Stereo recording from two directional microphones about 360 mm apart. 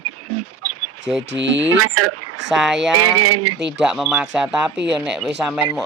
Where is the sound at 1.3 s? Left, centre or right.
Right.